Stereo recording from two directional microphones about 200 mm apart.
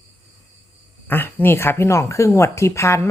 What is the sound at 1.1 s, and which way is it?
Speech, 10° left (ahead or behind).